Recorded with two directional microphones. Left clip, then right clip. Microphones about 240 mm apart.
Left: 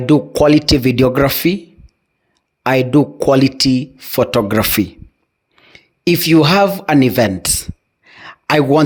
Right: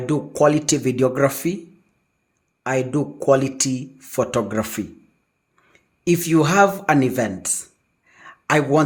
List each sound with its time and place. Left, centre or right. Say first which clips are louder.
0.0 s speech: left 6 dB; left
2.6 s speech: left 9 dB; left
5.5 s a sound: left 12 dB; left